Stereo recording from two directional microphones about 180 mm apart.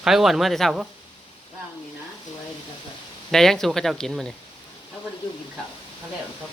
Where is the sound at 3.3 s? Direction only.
Centre (ahead or behind).